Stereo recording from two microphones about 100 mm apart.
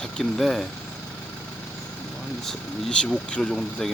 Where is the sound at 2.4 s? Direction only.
5° left (ahead or behind).